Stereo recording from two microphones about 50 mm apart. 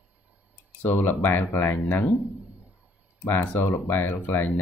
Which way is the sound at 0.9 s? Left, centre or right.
Left.